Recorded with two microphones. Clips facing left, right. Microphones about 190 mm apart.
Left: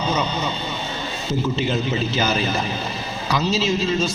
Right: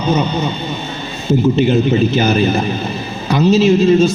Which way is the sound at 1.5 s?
55° right (ahead or behind).